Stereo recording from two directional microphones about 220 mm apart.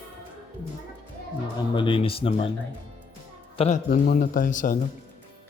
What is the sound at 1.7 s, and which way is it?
Speech, 20° left (ahead or behind).